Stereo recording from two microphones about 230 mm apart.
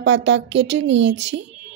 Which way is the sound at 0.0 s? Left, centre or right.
Right.